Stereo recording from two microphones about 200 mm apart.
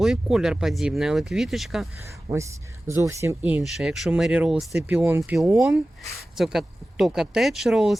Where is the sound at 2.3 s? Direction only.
15° right (ahead or behind); by 7.9 s centre (ahead or behind).